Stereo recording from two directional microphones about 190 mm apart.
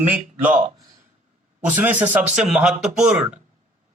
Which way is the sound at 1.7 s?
10° right (ahead or behind).